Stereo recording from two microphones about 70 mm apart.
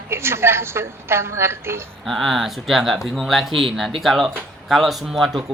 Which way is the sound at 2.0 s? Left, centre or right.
Centre.